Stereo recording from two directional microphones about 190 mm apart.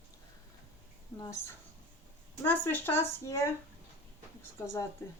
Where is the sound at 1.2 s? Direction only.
15° left (ahead or behind).